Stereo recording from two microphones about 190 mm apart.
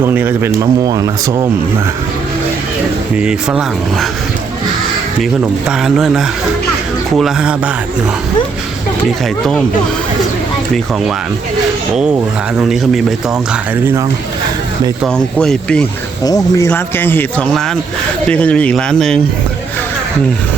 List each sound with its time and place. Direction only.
0.0 s speech: 10° right (ahead or behind)
3.2 s speech: 5° right (ahead or behind)
5.2 s speech: 5° right (ahead or behind)
12.6 s speech: centre (ahead or behind)
15.0 s speech: 5° left (ahead or behind)
16.2 s speech: 20° left (ahead or behind); by 19.2 s 5° left (ahead or behind)